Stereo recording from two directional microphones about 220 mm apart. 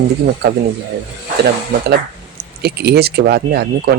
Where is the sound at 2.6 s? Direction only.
45° right (ahead or behind).